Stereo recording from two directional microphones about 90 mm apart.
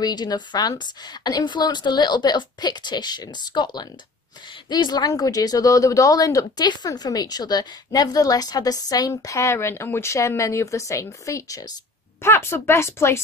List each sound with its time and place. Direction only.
0.0 s a woman's voice: 50° left (ahead or behind)
12.2 s speech: 30° left (ahead or behind)